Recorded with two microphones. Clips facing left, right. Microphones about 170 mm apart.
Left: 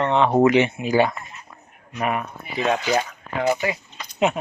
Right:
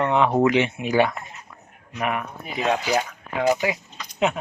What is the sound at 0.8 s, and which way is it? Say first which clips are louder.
Speech: left 1 dB; 30° left (ahead or behind).